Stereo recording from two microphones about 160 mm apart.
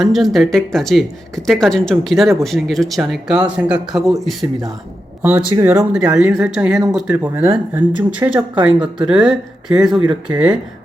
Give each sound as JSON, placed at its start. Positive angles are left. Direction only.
{"t": 0.0, "sound": "speech", "side_deg": 0}
{"t": 5.2, "sound": "speech", "side_deg": -15}